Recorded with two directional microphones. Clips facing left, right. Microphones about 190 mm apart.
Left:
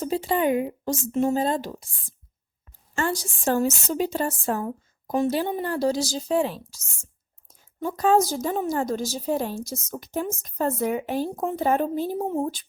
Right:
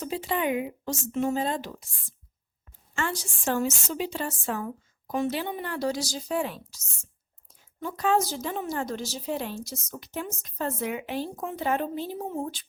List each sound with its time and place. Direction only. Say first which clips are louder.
0.0 s a woman's voice: left 5 dB; 35° left (ahead or behind)
2.9 s a woman's voice: left 5 dB; 40° left (ahead or behind)
7.8 s a woman's voice: left 5 dB; 40° left (ahead or behind)